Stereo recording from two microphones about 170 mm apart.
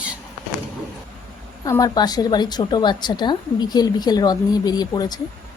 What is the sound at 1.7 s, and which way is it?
Speech, 20° left (ahead or behind).